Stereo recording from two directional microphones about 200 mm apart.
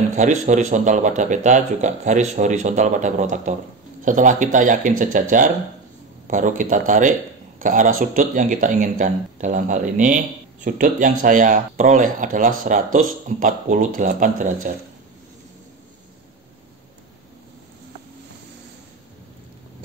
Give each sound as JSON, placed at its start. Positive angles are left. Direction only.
{"t": 0.1, "sound": "speech", "side_deg": -35}
{"t": 6.2, "sound": "speech", "side_deg": -40}